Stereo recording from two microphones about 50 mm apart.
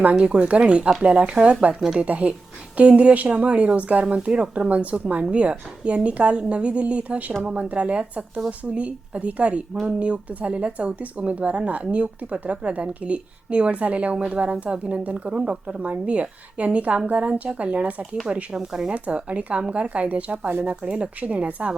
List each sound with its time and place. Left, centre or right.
0.0 s speech: right
18.5 s speech: centre
18.9 s speech: right
20.8 s speech: centre
21.2 s speech: right